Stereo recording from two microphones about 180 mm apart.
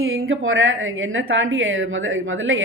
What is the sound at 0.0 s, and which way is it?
A woman's voice, 90° right.